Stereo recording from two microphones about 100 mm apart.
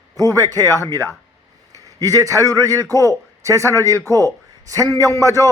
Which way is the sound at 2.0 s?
35° right (ahead or behind).